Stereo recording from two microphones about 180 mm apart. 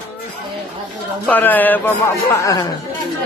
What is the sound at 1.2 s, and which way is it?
A man's voice, 10° left (ahead or behind).